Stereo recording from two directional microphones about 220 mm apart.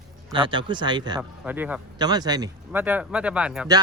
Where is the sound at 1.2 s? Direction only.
10° right (ahead or behind).